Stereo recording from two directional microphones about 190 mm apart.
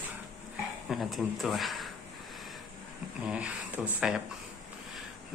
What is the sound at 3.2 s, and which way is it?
Speech, 5° right (ahead or behind).